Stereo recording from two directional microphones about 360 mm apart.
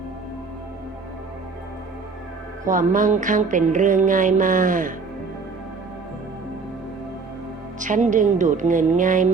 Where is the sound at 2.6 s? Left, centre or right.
Right.